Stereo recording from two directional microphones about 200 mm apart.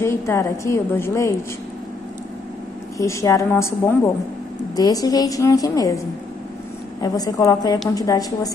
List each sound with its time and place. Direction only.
0.0 s a woman's voice: 15° left (ahead or behind)
3.0 s a woman's voice: 15° left (ahead or behind)
7.0 s a woman's voice: 20° left (ahead or behind)